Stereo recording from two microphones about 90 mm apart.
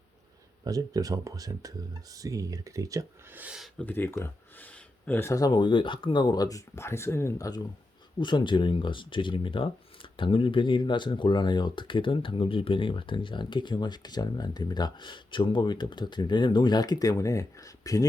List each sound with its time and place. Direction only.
0.6 s speech: 45° right (ahead or behind)
3.8 s speech: 20° left (ahead or behind)
4.2 s a sound: 20° left (ahead or behind)
5.3 s speech: 40° left (ahead or behind)
5.5 s speech: 65° left (ahead or behind); by 6.6 s 45° left (ahead or behind)
6.7 s speech: 30° left (ahead or behind)
8.2 s speech: 60° left (ahead or behind); by 18.0 s 40° left (ahead or behind)